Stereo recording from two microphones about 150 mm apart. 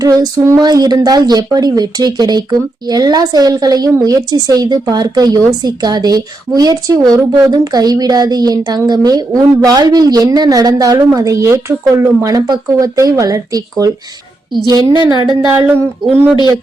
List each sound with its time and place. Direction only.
0.0 s speech: 25° right (ahead or behind)